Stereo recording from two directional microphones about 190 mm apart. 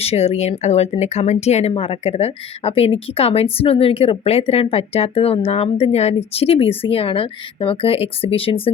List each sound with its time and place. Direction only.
0.0 s a woman's voice: 35° left (ahead or behind)